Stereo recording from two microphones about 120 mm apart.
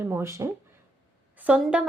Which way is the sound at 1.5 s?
10° right (ahead or behind).